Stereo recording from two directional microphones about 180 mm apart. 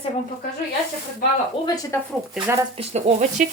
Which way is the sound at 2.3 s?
10° right (ahead or behind).